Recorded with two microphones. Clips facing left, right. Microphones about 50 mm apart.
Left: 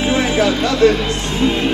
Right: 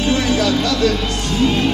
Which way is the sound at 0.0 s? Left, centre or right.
Left.